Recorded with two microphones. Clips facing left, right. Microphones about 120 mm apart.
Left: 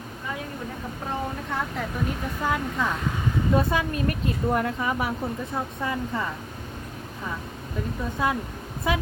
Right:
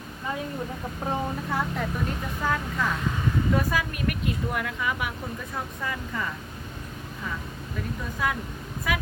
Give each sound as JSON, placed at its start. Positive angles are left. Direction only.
{"t": 1.5, "sound": "speech", "side_deg": -5}
{"t": 2.4, "sound": "speech", "side_deg": 15}
{"t": 3.5, "sound": "a woman's voice", "side_deg": 25}
{"t": 8.2, "sound": "a woman's voice", "side_deg": 25}